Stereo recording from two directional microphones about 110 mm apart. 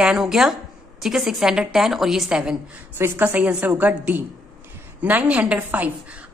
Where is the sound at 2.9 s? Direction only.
20° right (ahead or behind).